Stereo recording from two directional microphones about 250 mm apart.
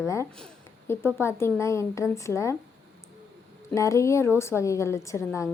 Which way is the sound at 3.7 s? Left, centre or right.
Centre.